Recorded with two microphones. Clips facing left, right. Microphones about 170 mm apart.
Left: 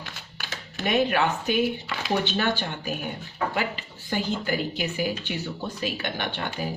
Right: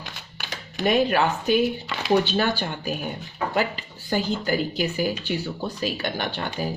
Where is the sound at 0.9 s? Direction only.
35° right (ahead or behind).